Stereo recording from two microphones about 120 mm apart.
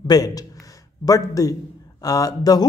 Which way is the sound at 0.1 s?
30° left (ahead or behind).